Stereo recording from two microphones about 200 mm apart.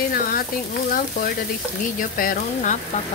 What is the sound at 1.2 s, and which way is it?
Stir, 45° left (ahead or behind).